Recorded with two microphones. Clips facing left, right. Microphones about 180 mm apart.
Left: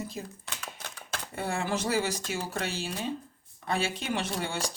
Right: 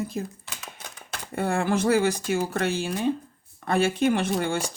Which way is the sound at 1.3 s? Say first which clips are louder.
Right 7 dB; 55° right (ahead or behind).